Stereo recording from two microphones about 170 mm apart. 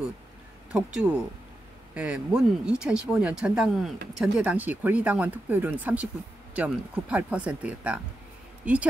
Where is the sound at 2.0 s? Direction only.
5° right (ahead or behind).